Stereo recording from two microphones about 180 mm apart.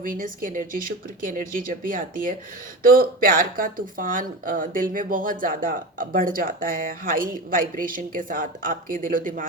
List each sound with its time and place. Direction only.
0.0 s speech: 50° right (ahead or behind)